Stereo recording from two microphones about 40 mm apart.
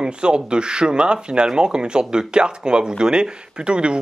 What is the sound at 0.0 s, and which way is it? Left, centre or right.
Speech, right.